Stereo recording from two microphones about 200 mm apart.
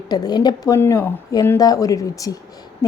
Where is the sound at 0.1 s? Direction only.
20° left (ahead or behind).